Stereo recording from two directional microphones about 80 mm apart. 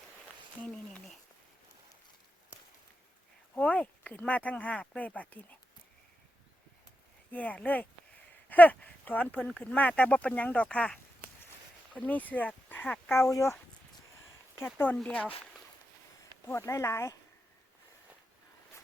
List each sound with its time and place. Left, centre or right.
3.5 s speech: centre
7.3 s speech: centre
8.4 s a sound: centre
9.4 s speech: centre; by 13.6 s left
14.6 s speech: left
15.0 s speech: centre
16.5 s speech: left